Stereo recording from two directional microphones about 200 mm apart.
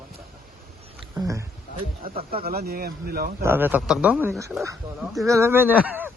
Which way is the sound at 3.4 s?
10° right (ahead or behind).